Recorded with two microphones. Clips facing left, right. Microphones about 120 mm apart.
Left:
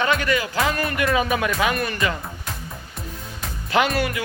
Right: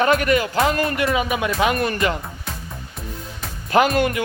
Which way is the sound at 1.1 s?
15° right (ahead or behind).